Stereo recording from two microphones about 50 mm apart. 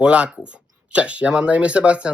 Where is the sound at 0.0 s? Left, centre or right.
Right.